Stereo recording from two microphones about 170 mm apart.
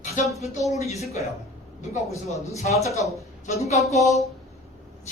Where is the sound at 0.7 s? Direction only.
40° left (ahead or behind).